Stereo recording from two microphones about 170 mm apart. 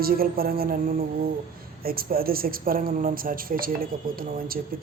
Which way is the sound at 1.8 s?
60° right (ahead or behind).